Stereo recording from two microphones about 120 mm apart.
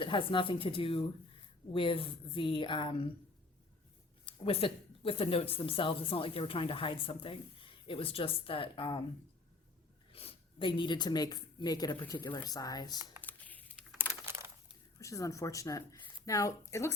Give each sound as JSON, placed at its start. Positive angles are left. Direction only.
{"t": 0.0, "sound": "speech", "side_deg": 45}
{"t": 4.3, "sound": "speech", "side_deg": 50}
{"t": 10.1, "sound": "speech", "side_deg": 50}
{"t": 13.2, "sound": "typing", "side_deg": 15}
{"t": 14.0, "sound": "a sound", "side_deg": -20}
{"t": 14.9, "sound": "speech", "side_deg": 25}